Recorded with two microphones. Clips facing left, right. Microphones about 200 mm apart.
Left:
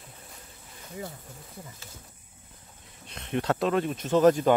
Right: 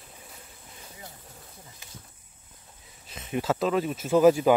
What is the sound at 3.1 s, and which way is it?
Speech, centre (ahead or behind).